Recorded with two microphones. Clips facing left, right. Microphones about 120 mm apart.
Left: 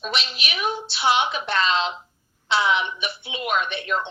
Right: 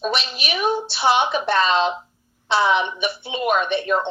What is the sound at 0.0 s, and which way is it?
Speech, 35° right (ahead or behind).